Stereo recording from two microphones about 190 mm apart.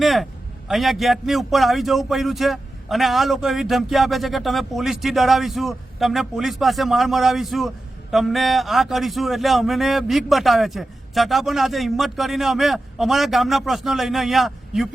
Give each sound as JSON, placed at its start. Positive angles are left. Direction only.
{"t": 0.0, "sound": "speech", "side_deg": 0}